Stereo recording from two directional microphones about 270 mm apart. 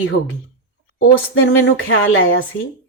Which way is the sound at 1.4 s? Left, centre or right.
Left.